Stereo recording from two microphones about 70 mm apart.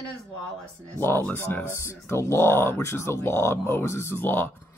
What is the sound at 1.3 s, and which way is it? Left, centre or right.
Speech, left.